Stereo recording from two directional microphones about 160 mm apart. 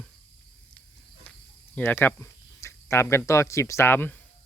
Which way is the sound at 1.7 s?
15° left (ahead or behind).